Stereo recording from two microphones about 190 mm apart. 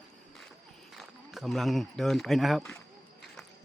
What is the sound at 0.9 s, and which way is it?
Speech, centre (ahead or behind).